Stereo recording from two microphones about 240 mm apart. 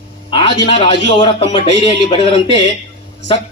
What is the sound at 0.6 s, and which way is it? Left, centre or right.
A man's voice, left.